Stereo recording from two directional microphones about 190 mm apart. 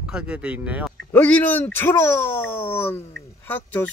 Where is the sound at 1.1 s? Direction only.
5° left (ahead or behind).